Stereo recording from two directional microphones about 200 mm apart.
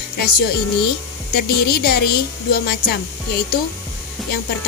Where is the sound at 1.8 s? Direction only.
50° left (ahead or behind).